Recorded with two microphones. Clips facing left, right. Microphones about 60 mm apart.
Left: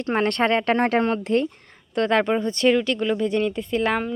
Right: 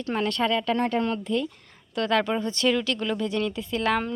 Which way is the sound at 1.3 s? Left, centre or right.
Left.